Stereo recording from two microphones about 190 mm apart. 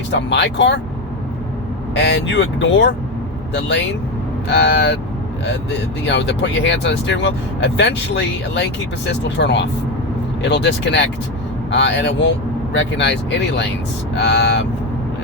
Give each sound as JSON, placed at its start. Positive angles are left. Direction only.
{"t": 0.1, "sound": "speech", "side_deg": 65}
{"t": 2.0, "sound": "speech", "side_deg": 65}
{"t": 6.1, "sound": "speech", "side_deg": 70}